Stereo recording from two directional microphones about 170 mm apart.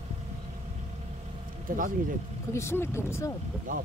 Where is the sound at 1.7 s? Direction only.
55° right (ahead or behind).